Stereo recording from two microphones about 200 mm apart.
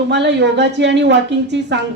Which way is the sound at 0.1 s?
60° right (ahead or behind).